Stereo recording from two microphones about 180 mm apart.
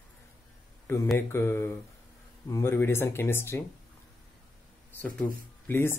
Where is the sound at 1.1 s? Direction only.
15° left (ahead or behind).